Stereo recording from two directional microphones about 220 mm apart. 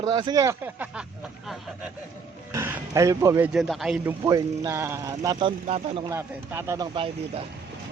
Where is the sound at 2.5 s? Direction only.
10° right (ahead or behind).